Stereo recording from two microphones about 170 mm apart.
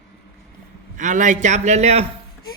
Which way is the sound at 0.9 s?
45° right (ahead or behind).